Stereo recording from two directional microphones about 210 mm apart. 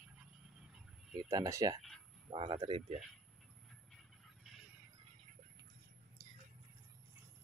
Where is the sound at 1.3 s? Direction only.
15° right (ahead or behind).